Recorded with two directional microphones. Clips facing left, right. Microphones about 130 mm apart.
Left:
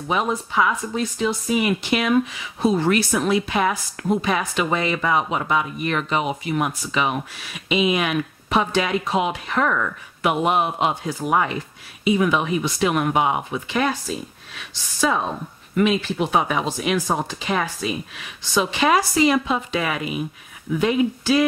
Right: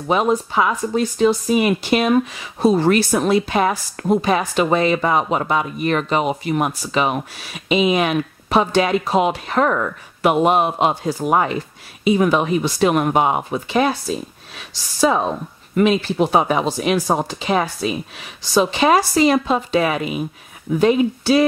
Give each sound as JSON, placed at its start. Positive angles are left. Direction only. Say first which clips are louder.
{"t": 0.1, "sound": "speech", "louder": "right 5 dB", "side_deg": -35}